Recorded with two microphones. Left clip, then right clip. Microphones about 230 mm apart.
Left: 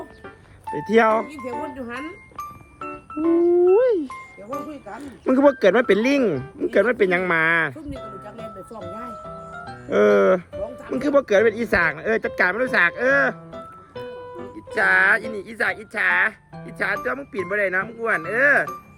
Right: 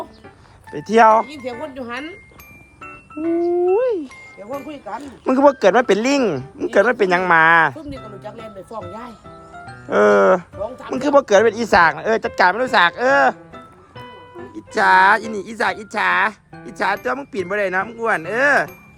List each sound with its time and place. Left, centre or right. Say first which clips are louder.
0.7 s speech: right 5 dB; centre
1.3 s speech: right 1 dB; centre
3.2 s speech: left 1 dB; centre
3.5 s speech: left 1 dB; centre
8.2 s speech: right 2 dB; centre
9.9 s speech: right 3 dB; centre
14.7 s speech: right 4 dB; centre